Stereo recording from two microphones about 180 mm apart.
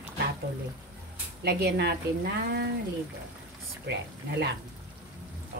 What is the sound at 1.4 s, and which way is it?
Speech, 65° right (ahead or behind).